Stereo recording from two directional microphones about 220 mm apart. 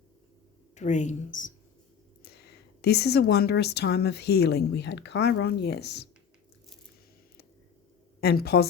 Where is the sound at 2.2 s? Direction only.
45° left (ahead or behind).